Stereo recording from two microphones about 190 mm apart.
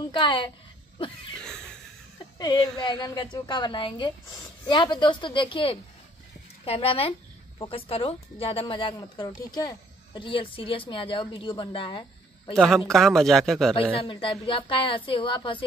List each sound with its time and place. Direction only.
0.1 s speech: 25° left (ahead or behind)
0.9 s a sound: 25° left (ahead or behind)
1.4 s a sound: 5° left (ahead or behind)
2.3 s speech: 20° left (ahead or behind)
12.5 s speech: centre (ahead or behind)
13.9 s speech: 25° left (ahead or behind)